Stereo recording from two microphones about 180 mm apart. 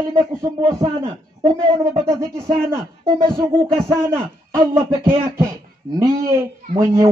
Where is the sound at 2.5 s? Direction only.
15° right (ahead or behind).